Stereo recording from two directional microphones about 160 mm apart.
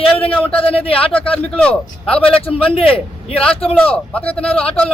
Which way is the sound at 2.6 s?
35° left (ahead or behind).